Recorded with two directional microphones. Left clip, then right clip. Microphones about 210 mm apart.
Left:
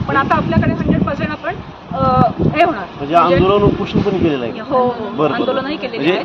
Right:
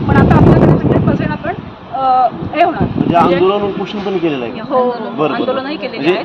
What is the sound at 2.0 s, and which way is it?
Speech, 15° left (ahead or behind).